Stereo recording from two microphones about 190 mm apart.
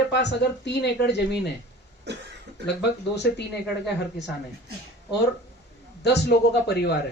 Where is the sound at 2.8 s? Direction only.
60° left (ahead or behind).